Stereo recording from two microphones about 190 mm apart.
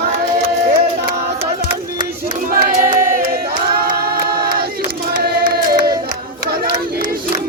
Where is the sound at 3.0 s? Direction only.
50° right (ahead or behind).